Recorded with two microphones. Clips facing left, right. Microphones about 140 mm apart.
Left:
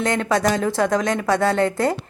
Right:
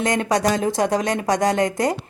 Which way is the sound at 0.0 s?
15° right (ahead or behind).